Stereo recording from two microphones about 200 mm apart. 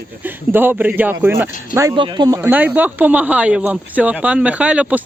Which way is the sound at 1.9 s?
25° right (ahead or behind).